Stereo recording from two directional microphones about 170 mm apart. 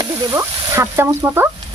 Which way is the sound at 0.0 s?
15° right (ahead or behind).